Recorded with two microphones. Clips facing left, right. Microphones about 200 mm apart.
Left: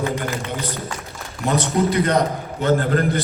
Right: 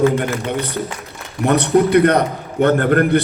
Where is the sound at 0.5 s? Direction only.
60° right (ahead or behind).